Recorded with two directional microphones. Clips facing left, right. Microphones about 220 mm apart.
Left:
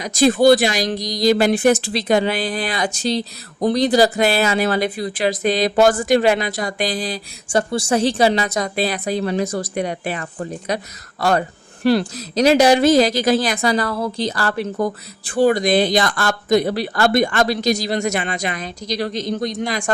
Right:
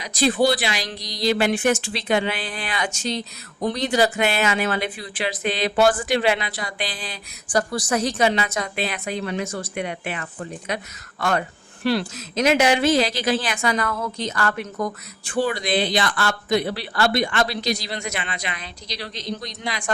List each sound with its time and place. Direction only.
0.0 s speech: 45° left (ahead or behind)
7.4 s speech: 25° left (ahead or behind); by 19.9 s 45° left (ahead or behind)